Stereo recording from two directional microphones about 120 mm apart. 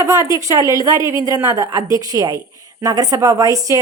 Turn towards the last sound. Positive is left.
turn(degrees=-30)  # may be behind; listen again after turning